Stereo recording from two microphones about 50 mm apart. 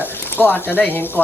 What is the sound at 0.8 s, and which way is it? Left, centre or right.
Speech, left.